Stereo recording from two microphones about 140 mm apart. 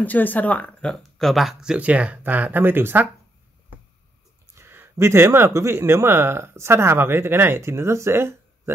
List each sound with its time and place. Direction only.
0.0 s speech: 10° left (ahead or behind); by 3.1 s 15° right (ahead or behind)
4.6 s speech: 15° right (ahead or behind)